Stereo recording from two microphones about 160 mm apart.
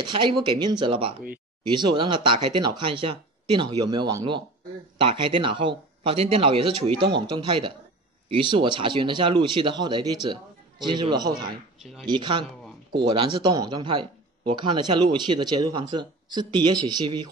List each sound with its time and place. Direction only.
0.0 s speech: 30° right (ahead or behind)
11.8 s speech: centre (ahead or behind)
12.1 s speech: 30° right (ahead or behind)